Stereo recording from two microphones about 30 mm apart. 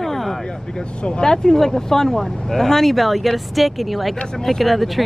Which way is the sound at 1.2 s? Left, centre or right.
Centre.